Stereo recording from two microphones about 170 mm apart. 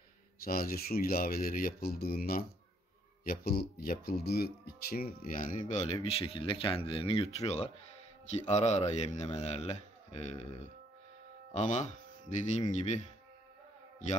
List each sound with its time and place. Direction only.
0.4 s speech: 60° left (ahead or behind); by 10.3 s 35° left (ahead or behind)
11.5 s speech: 45° left (ahead or behind)